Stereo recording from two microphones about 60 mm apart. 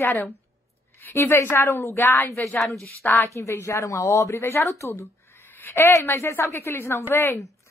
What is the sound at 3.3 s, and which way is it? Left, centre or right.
Speech, left.